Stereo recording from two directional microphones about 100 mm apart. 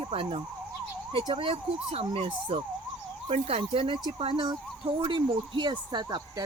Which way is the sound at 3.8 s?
50° right (ahead or behind).